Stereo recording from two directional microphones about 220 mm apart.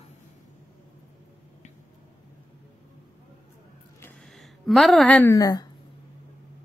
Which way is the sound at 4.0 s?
Centre (ahead or behind).